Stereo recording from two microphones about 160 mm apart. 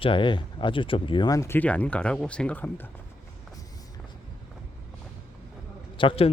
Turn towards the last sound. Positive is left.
turn(degrees=35)  # may be behind; listen again after turning